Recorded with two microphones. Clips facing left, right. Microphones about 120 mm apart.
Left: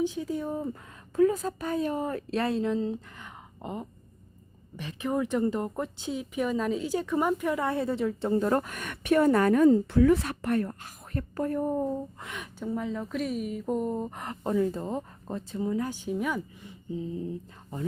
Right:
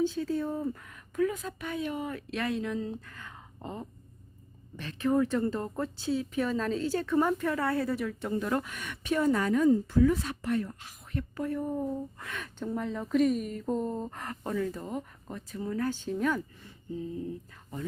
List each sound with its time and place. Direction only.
0.0 s speech: 15° left (ahead or behind); by 11.9 s 40° left (ahead or behind)
12.2 s speech: 15° left (ahead or behind)
12.6 s speech: centre (ahead or behind); by 17.1 s 15° left (ahead or behind)